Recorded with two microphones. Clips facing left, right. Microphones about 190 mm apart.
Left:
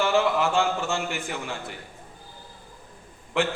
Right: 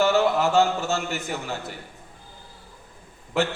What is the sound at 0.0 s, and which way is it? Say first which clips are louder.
Speech: right 2 dB; 40° right (ahead or behind).